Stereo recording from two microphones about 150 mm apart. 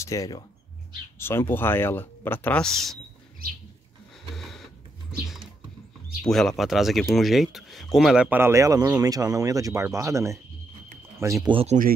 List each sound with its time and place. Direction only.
0.0 s speech: 20° left (ahead or behind); by 3.0 s centre (ahead or behind)
4.4 s printer: centre (ahead or behind)
5.2 s a sound: 5° right (ahead or behind)
6.2 s speech: centre (ahead or behind); by 11.5 s 20° right (ahead or behind)
11.5 s speech: 45° right (ahead or behind)